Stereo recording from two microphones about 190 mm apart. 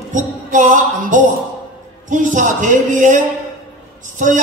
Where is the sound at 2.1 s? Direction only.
40° right (ahead or behind).